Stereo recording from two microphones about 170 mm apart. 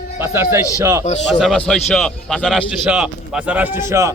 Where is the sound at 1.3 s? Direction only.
Centre (ahead or behind).